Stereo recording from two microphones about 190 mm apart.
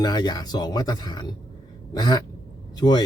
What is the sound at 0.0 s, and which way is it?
Speech, 20° left (ahead or behind).